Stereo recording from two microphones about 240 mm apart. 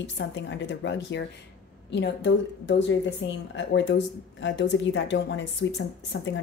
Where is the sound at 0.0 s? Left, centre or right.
Left.